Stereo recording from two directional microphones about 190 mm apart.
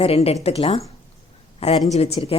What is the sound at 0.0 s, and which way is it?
A woman's voice, 30° left (ahead or behind).